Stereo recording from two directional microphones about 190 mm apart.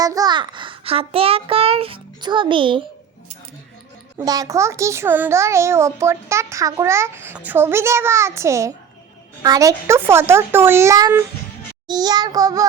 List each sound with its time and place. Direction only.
0.0 s a child's voice: 20° right (ahead or behind)
4.2 s a child's voice: 20° right (ahead or behind)